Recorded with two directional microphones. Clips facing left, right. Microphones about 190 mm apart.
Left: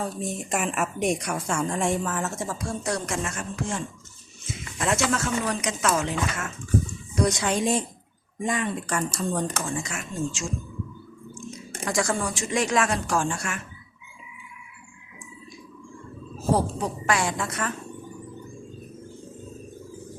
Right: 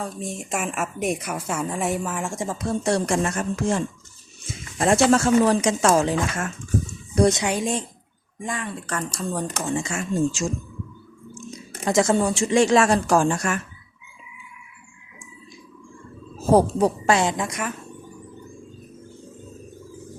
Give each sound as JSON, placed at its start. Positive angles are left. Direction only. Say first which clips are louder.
{"t": 0.0, "sound": "a woman's voice", "louder": "left 1 dB", "side_deg": 0}
{"t": 7.6, "sound": "speech", "louder": "left 1 dB", "side_deg": 5}
{"t": 8.4, "sound": "speech", "louder": "left 3 dB", "side_deg": 20}
{"t": 9.1, "sound": "speech", "louder": "right 1 dB", "side_deg": -5}
{"t": 9.5, "sound": "speech", "louder": "right 4 dB", "side_deg": -25}
{"t": 11.9, "sound": "speech", "louder": "right 7 dB", "side_deg": -25}
{"t": 17.1, "sound": "a woman's voice", "louder": "right 5 dB", "side_deg": -25}